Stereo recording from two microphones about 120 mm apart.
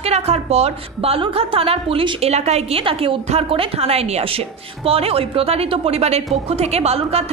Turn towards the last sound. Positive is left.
turn(degrees=-60)  # may be behind; listen again after turning